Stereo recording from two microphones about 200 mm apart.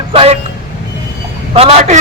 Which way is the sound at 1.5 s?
30° right (ahead or behind).